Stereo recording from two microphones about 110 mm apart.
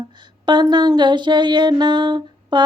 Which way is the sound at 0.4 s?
45° right (ahead or behind).